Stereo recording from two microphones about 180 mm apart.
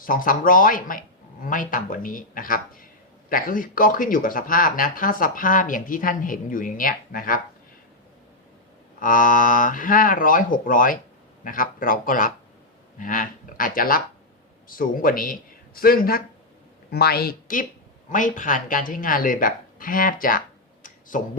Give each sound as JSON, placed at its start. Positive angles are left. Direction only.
{"t": 0.0, "sound": "speech", "side_deg": 50}
{"t": 9.0, "sound": "speech", "side_deg": 50}